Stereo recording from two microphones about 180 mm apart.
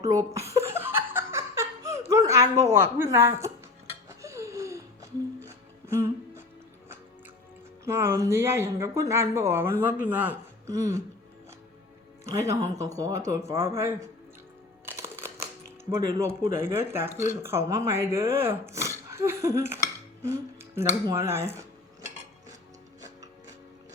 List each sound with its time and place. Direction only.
0.3 s laughter: 15° right (ahead or behind)
2.7 s speech: 15° right (ahead or behind)
4.2 s a sound: 15° right (ahead or behind)
5.8 s music: 15° right (ahead or behind)
7.9 s speech: 15° right (ahead or behind)
12.3 s speech: 15° right (ahead or behind)
14.8 s crumpling: 15° right (ahead or behind)
15.9 s speech: 15° right (ahead or behind)
20.2 s music: 15° right (ahead or behind)
21.1 s speech: 15° right (ahead or behind)